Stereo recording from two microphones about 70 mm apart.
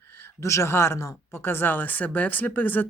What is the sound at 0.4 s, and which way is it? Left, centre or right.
A man's voice, left.